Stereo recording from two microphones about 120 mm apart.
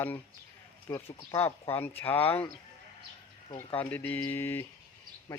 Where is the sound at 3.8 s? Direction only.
15° left (ahead or behind).